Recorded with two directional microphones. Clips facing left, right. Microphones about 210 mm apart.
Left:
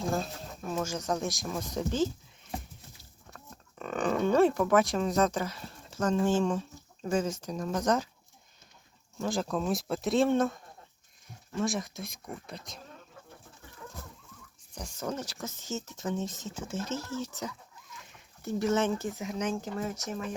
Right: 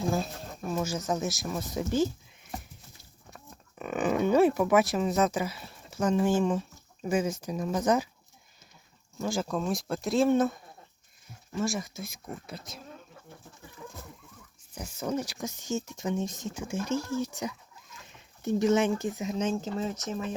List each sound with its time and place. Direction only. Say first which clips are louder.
0.7 s speech: right 1 dB; 5° right (ahead or behind)
3.3 s speech: right 1 dB; 10° right (ahead or behind)
9.1 s speech: right 1 dB; centre (ahead or behind)
14.8 s speech: right 4 dB; 10° right (ahead or behind)